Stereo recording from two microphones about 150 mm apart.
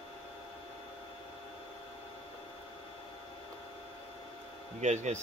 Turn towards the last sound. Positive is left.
turn(degrees=-50)  # may be behind; listen again after turning